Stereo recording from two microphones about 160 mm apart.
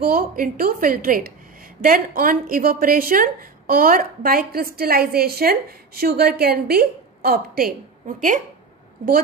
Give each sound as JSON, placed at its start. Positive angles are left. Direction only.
{"t": 0.0, "sound": "a woman's voice", "side_deg": -65}
{"t": 8.0, "sound": "speech", "side_deg": -55}